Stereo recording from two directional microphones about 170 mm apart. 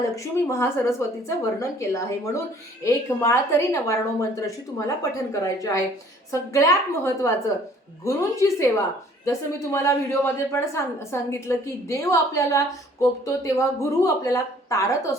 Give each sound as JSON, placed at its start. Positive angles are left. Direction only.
{"t": 0.0, "sound": "a woman's voice", "side_deg": 15}